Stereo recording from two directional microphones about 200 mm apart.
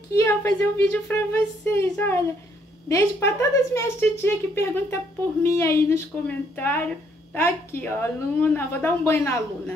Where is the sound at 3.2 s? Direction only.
15° left (ahead or behind).